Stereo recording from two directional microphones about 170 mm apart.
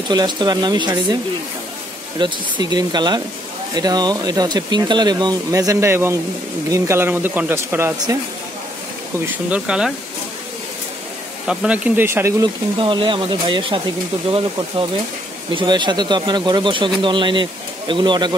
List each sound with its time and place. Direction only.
0.1 s speech: 25° right (ahead or behind)
2.1 s speech: 25° right (ahead or behind)
9.5 s speech: 5° right (ahead or behind)
11.4 s speech: 5° right (ahead or behind)
12.7 s speech: 30° right (ahead or behind)
15.5 s speech: 25° right (ahead or behind)